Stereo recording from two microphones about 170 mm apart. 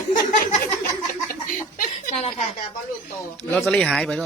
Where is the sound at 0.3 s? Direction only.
50° left (ahead or behind).